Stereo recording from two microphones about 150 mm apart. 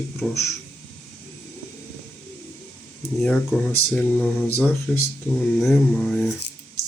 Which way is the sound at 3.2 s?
5° left (ahead or behind).